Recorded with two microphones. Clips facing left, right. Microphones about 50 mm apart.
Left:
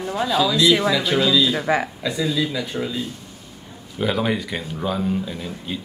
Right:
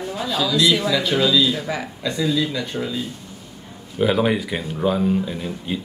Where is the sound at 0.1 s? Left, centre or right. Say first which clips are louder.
Left 3 dB; centre.